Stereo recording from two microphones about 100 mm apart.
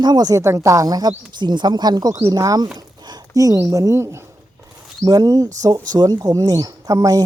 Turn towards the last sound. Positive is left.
turn(degrees=-35)  # may be behind; listen again after turning